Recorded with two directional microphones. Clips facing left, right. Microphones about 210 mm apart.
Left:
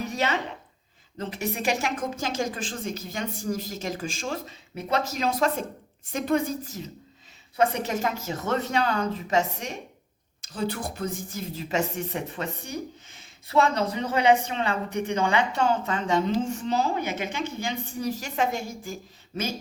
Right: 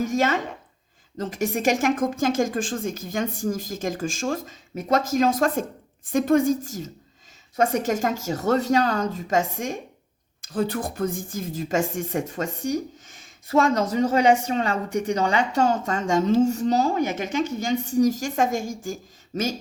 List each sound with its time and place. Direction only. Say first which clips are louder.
0.0 s a woman's voice: right 5 dB; 45° right (ahead or behind)
13.1 s a sound: right 12 dB; 45° right (ahead or behind)
13.9 s a woman's voice: right 3 dB; 45° right (ahead or behind)